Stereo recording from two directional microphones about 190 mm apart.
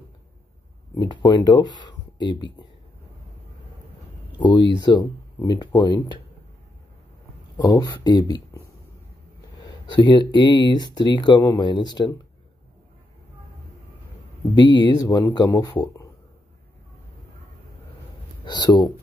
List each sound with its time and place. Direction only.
0.9 s speech: 25° left (ahead or behind)
4.4 s speech: 25° left (ahead or behind)
7.5 s speech: 20° left (ahead or behind)
9.7 s speech: 25° left (ahead or behind)
14.5 s speech: 25° left (ahead or behind)
18.4 s speech: 20° left (ahead or behind)